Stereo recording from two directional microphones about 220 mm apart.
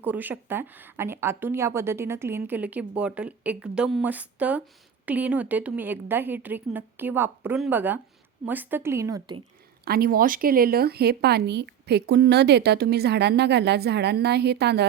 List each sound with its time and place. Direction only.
0.0 s a woman's voice: 10° right (ahead or behind)
9.8 s speech: 45° right (ahead or behind)